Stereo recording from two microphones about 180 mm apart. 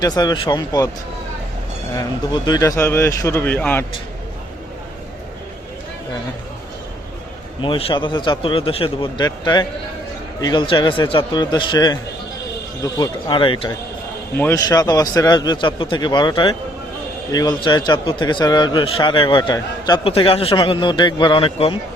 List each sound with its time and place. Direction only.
0.0 s a man's voice: 20° left (ahead or behind)
2.0 s speech: 20° left (ahead or behind)
7.6 s a man's voice: 30° left (ahead or behind)
14.3 s a man's voice: 15° left (ahead or behind); by 21.8 s 30° left (ahead or behind)